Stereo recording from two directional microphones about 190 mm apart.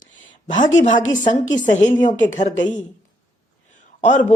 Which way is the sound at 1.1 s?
40° left (ahead or behind).